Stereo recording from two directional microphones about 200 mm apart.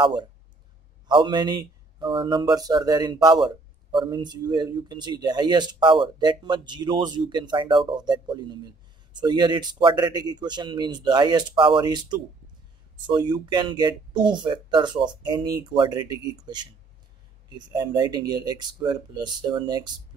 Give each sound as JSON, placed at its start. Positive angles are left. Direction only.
{"t": 0.0, "sound": "speech", "side_deg": -20}